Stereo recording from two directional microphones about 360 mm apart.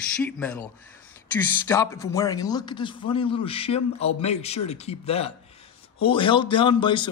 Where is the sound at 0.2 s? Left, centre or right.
Centre.